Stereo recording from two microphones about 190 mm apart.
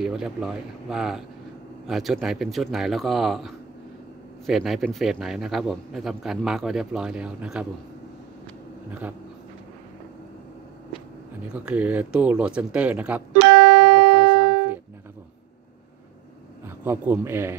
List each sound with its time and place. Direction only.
0.0 s a man's voice: 5° right (ahead or behind)
11.6 s speech: 10° right (ahead or behind)
13.4 s music: 25° right (ahead or behind)
14.1 s music: 10° right (ahead or behind)
16.6 s a man's voice: 10° right (ahead or behind)